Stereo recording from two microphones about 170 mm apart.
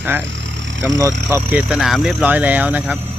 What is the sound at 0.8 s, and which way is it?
Speech, 20° right (ahead or behind).